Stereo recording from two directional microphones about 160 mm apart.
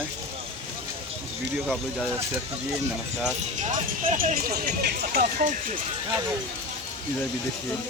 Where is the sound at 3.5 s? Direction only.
50° right (ahead or behind).